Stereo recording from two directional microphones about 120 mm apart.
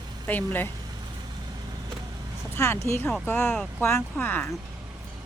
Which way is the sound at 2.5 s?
20° left (ahead or behind).